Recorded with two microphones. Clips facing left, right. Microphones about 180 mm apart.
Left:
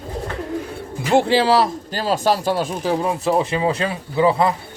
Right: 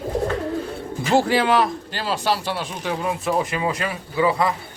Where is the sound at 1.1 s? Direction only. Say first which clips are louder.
Left 3 dB; 25° left (ahead or behind).